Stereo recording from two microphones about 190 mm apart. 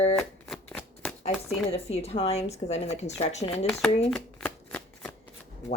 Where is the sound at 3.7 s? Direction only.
Centre (ahead or behind).